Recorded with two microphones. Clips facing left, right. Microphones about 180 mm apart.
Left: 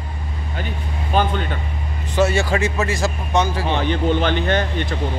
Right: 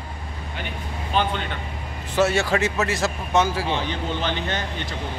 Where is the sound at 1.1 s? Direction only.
45° left (ahead or behind).